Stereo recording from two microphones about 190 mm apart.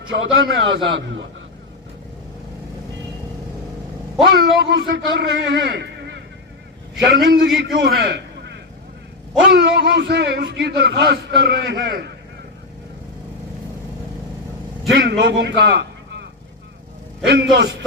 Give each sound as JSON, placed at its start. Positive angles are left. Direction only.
{"t": 0.1, "sound": "a man's voice", "side_deg": -65}
{"t": 4.4, "sound": "a man's voice", "side_deg": -60}
{"t": 14.9, "sound": "a man's voice", "side_deg": -55}
{"t": 17.2, "sound": "a man's voice", "side_deg": -55}